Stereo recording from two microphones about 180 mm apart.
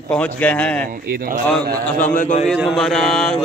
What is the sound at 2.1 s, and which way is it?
Speech, 45° left (ahead or behind).